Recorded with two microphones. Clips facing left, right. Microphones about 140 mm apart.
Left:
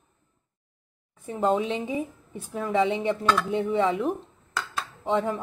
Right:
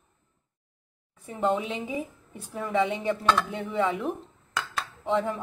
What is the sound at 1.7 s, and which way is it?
A woman's voice, 35° left (ahead or behind).